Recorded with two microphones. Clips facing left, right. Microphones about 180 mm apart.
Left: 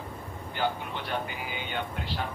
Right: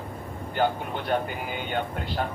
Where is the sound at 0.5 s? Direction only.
50° right (ahead or behind).